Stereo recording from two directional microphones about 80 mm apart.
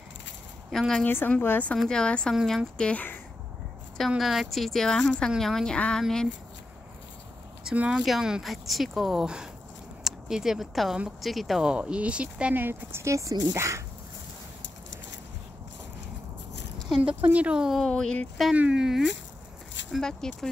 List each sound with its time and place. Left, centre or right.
0.7 s speech: centre
1.0 s speech: left
1.8 s speech: centre
2.9 s speech: centre
4.2 s speech: centre
7.7 s speech: centre
8.0 s speech: centre
11.7 s speech: centre; by 13.8 s right
16.9 s speech: centre
17.7 s speech: centre
18.5 s speech: centre
19.9 s speech: centre